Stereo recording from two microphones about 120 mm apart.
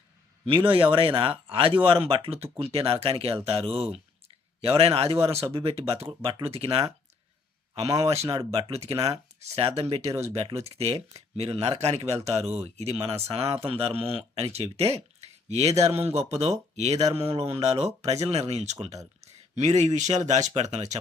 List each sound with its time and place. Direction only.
0.4 s speech: 45° right (ahead or behind)
7.9 s speech: 25° right (ahead or behind)
8.4 s speech: 60° right (ahead or behind)
15.7 s speech: 25° right (ahead or behind)
16.0 s speech: 60° right (ahead or behind)